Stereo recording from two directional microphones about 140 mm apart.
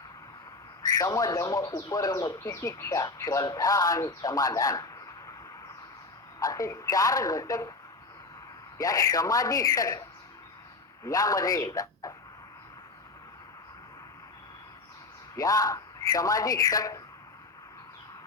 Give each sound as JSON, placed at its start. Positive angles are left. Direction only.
{"t": 0.8, "sound": "speech", "side_deg": 20}
{"t": 6.4, "sound": "speech", "side_deg": 25}
{"t": 8.8, "sound": "speech", "side_deg": 25}
{"t": 11.0, "sound": "a man's voice", "side_deg": 25}
{"t": 15.4, "sound": "speech", "side_deg": 25}